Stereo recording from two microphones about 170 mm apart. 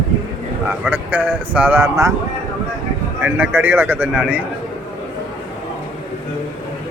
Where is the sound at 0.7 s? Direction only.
10° right (ahead or behind).